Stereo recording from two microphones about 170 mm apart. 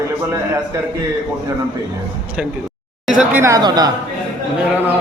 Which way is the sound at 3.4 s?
20° right (ahead or behind).